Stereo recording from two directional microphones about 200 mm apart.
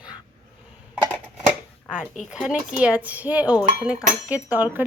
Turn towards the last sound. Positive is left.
turn(degrees=-10)  # may be behind; listen again after turning